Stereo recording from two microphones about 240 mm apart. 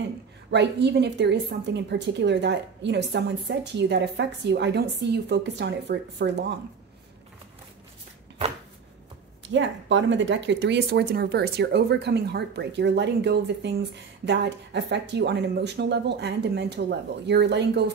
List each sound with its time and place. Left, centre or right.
0.5 s a woman's voice: right
9.5 s a woman's voice: right